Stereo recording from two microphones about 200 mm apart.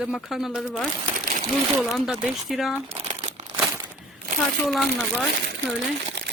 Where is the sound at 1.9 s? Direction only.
Centre (ahead or behind).